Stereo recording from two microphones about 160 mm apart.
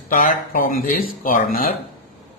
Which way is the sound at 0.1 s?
60° left (ahead or behind).